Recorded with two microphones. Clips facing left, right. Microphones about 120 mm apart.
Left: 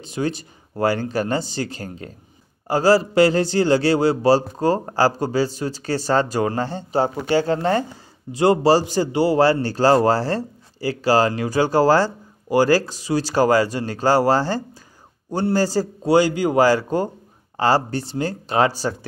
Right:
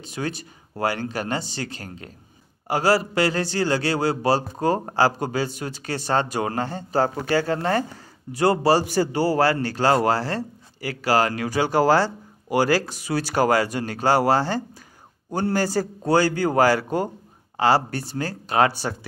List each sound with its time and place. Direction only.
0.0 s a man's voice: 30° left (ahead or behind)
16.1 s a man's voice: 15° left (ahead or behind)
17.6 s speech: 40° left (ahead or behind)
17.8 s a man's voice: 25° left (ahead or behind)